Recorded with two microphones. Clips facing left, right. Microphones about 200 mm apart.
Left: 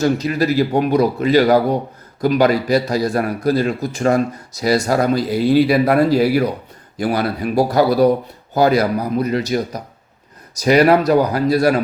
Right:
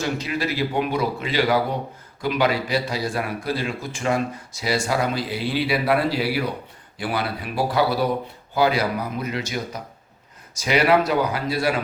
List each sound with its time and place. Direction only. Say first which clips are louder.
0.0 s a man's voice: left 8 dB; 40° left (ahead or behind)